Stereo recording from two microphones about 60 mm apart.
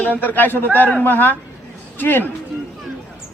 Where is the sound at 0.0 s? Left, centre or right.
Left.